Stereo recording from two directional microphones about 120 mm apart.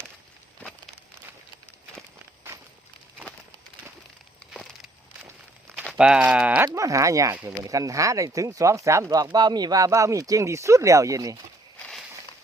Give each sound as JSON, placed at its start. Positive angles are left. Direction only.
{"t": 4.5, "sound": "a sound", "side_deg": 0}
{"t": 6.0, "sound": "speech", "side_deg": -10}
{"t": 6.7, "sound": "speech", "side_deg": -30}